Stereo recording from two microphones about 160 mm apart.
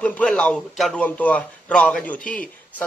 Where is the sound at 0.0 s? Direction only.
5° left (ahead or behind).